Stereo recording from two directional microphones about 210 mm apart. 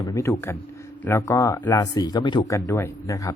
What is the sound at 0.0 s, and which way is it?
A man's voice, 15° left (ahead or behind).